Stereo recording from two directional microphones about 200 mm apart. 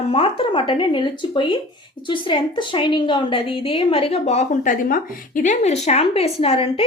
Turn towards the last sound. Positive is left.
turn(degrees=30)  # may be behind; listen again after turning